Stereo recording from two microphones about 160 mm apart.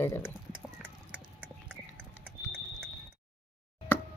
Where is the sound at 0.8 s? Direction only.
10° right (ahead or behind).